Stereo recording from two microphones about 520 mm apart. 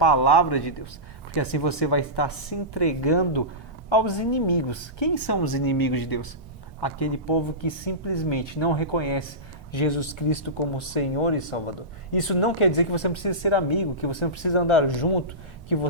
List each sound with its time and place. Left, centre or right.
0.0 s a woman's voice: left